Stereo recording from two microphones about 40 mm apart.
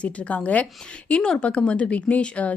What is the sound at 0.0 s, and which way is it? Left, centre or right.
Speech, left.